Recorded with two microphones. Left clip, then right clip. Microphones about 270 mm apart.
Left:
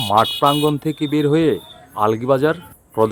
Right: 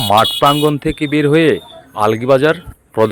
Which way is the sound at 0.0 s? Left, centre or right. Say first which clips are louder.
Right 4 dB; right.